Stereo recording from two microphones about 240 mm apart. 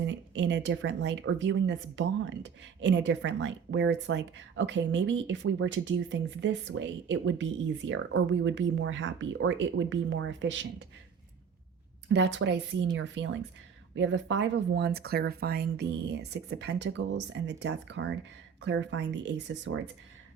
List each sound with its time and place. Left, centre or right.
0.0 s speech: right
12.0 s speech: right